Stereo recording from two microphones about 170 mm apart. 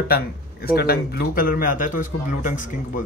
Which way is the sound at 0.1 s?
65° left (ahead or behind).